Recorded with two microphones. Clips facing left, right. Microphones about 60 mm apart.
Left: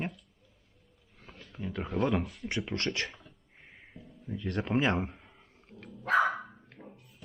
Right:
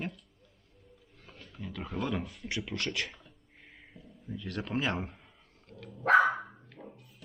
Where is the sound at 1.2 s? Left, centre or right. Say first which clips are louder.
Left 2 dB; centre.